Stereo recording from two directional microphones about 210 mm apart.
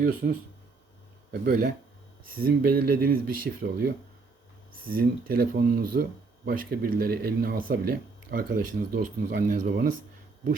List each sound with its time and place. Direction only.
0.0 s speech: 45° right (ahead or behind)